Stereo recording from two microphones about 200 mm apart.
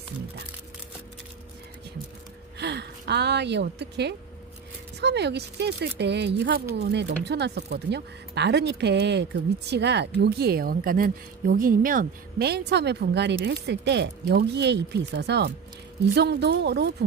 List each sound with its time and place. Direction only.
2.6 s a woman's voice: 55° right (ahead or behind)